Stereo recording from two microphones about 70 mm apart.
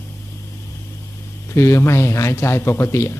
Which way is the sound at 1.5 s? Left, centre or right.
Left.